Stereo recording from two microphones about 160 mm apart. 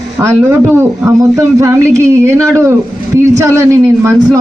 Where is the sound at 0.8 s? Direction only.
20° right (ahead or behind).